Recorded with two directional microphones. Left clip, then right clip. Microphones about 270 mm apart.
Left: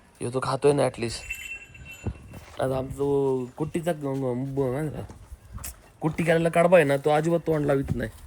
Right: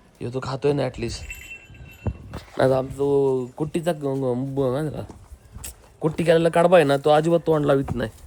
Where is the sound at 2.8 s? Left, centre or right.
Centre.